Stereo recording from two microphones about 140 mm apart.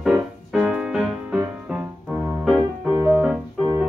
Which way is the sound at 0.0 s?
5° right (ahead or behind).